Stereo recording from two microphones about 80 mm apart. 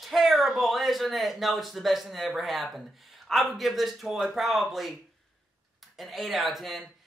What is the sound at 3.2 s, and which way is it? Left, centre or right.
Speech, centre.